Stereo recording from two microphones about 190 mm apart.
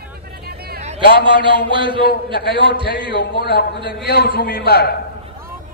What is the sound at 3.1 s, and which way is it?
A man's voice, 60° left (ahead or behind).